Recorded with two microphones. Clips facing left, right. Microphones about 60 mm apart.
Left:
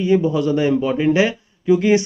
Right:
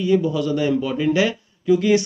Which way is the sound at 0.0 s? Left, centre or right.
Left.